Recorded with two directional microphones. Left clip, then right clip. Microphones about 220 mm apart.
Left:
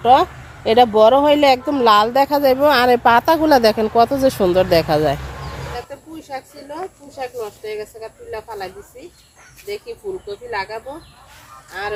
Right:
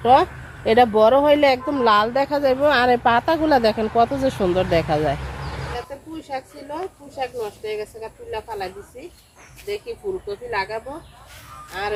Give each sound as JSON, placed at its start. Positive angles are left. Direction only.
{"t": 0.0, "sound": "speech", "side_deg": 25}
{"t": 5.7, "sound": "speech", "side_deg": 5}